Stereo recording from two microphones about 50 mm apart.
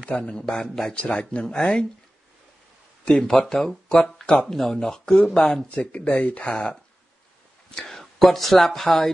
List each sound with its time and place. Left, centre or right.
0.0 s speech: centre
3.1 s speech: centre
5.9 s speech: left
7.7 s speech: centre